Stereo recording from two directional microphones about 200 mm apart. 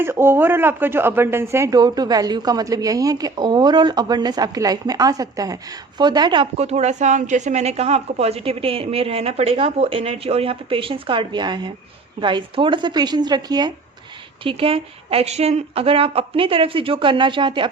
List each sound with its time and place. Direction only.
0.0 s a man's voice: 10° right (ahead or behind)